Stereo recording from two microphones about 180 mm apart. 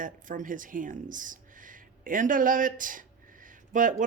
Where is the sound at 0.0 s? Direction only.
45° right (ahead or behind).